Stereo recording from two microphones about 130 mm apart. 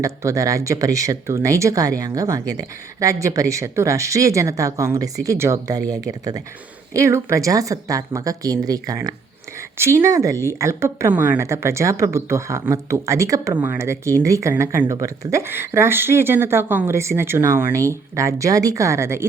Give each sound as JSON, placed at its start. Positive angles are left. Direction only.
{"t": 0.0, "sound": "speech", "side_deg": -25}